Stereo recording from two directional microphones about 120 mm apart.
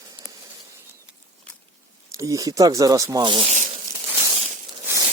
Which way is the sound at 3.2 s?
45° right (ahead or behind).